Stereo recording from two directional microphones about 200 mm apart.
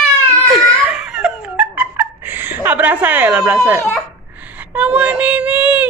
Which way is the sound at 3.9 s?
10° right (ahead or behind).